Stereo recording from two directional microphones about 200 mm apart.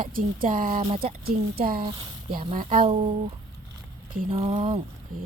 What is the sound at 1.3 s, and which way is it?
Speech, 50° right (ahead or behind).